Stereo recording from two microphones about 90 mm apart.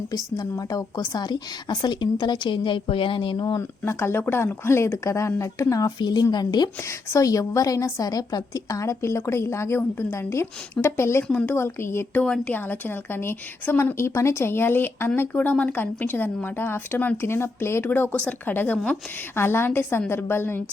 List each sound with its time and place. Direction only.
0.1 s a woman's voice: 40° left (ahead or behind); by 3.4 s 70° left (ahead or behind)
3.6 s a woman's voice: 30° left (ahead or behind)
6.0 s speech: 50° left (ahead or behind)
7.1 s a woman's voice: 40° left (ahead or behind)
11.3 s a woman's voice: 10° left (ahead or behind)
11.5 s a woman's voice: 30° left (ahead or behind)
12.2 s a woman's voice: 15° left (ahead or behind)